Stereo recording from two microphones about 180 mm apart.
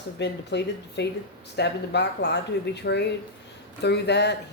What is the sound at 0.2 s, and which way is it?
Speech, 70° left (ahead or behind).